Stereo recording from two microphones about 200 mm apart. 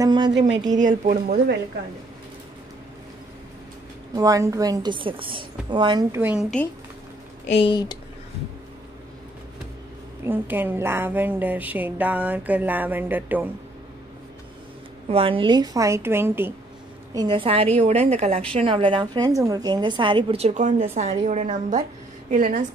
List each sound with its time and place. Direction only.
0.0 s a woman's voice: 25° right (ahead or behind)
0.7 s speech: 45° right (ahead or behind)
4.1 s a woman's voice: 15° right (ahead or behind)
7.4 s speech: 30° left (ahead or behind)
10.2 s a woman's voice: 10° right (ahead or behind)
15.0 s a woman's voice: 30° right (ahead or behind)